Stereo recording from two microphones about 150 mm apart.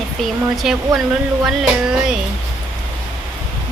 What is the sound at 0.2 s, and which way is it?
Speech, centre (ahead or behind).